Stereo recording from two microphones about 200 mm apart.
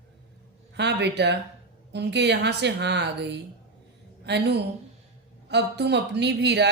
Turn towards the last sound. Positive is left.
turn(degrees=-60)  # may be behind; listen again after turning